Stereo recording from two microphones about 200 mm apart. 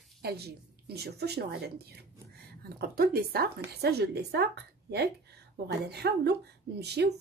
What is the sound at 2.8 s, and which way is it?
Speech, 50° right (ahead or behind).